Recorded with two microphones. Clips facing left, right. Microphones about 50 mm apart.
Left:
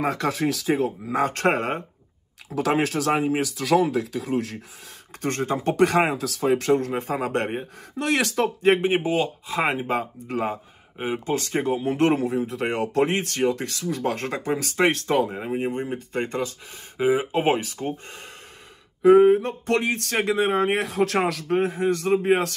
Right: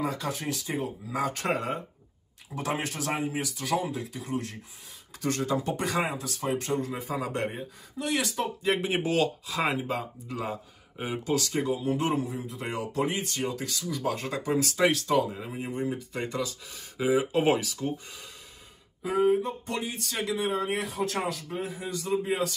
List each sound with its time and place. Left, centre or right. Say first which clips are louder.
0.0 s speech: left 7 dB; left
1.0 s speech: left 6 dB; left
2.6 s speech: left 9 dB; left
5.2 s speech: left 4 dB; left
5.8 s speech: left 9 dB; left
6.9 s speech: left 6 dB; left
8.7 s speech: left 8 dB; left
9.0 s speech: left 2 dB; centre
9.5 s speech: left 5 dB; left
19.0 s speech: left 10 dB; left